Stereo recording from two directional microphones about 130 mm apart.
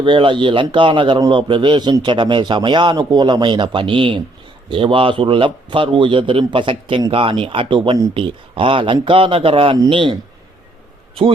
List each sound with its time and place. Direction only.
0.0 s a man's voice: 40° right (ahead or behind)